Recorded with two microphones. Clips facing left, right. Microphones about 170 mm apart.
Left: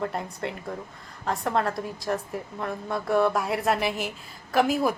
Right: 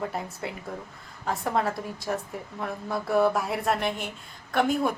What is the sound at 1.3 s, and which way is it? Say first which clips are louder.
A woman's voice: left 1 dB; centre (ahead or behind).